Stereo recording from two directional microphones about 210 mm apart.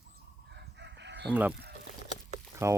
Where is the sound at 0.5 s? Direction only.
55° right (ahead or behind).